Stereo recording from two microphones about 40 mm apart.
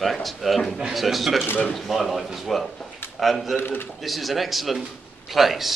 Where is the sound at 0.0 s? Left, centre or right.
Centre.